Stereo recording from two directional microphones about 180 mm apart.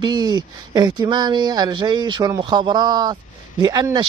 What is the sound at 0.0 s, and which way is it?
Speech, 25° right (ahead or behind).